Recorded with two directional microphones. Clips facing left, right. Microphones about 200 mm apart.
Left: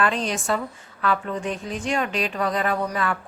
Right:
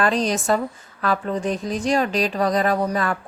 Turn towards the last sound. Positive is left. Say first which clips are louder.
# right 3 dB
turn(degrees=-35)  # may be behind; listen again after turning